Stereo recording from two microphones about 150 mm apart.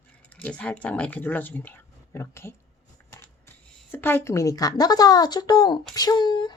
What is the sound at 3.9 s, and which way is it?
A woman's voice, 15° left (ahead or behind).